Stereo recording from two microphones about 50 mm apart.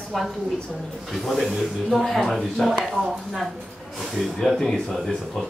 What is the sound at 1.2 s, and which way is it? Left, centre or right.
Speech, centre.